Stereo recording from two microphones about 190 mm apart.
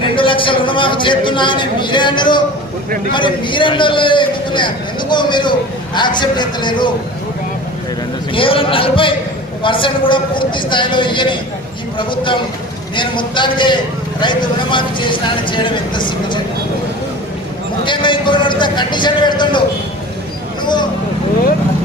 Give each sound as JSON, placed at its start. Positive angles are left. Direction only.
{"t": 0.0, "sound": "a man's voice", "side_deg": 25}
{"t": 8.3, "sound": "a man's voice", "side_deg": 30}
{"t": 17.8, "sound": "a man's voice", "side_deg": 25}